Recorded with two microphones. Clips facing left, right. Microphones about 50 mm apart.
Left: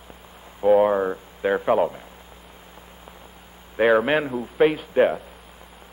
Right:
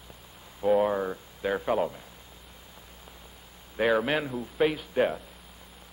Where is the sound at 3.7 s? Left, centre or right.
Left.